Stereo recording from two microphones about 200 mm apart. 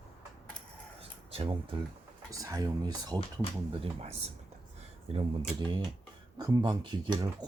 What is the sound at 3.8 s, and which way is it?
Speech, 30° right (ahead or behind).